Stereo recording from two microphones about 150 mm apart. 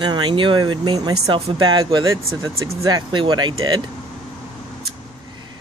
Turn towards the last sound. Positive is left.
turn(degrees=-30)  # may be behind; listen again after turning